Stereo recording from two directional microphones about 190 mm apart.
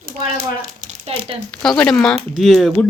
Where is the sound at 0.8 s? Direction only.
35° right (ahead or behind).